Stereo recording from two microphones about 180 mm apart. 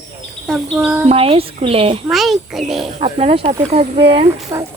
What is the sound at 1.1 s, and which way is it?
Speech, 35° right (ahead or behind).